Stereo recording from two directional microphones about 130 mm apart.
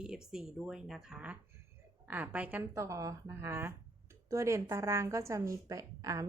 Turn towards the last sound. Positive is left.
turn(degrees=-25)  # may be behind; listen again after turning